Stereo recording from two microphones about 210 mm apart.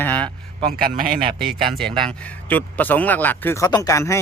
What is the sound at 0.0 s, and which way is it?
Speech, 5° left (ahead or behind).